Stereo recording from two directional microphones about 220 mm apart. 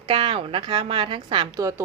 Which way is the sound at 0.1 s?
25° right (ahead or behind).